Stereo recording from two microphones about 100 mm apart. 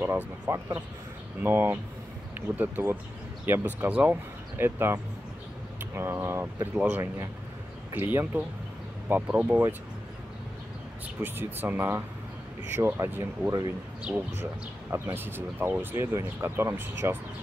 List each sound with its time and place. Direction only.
0.0 s speech: 25° right (ahead or behind)
6.7 s speech: 15° right (ahead or behind)
11.2 s speech: 20° right (ahead or behind)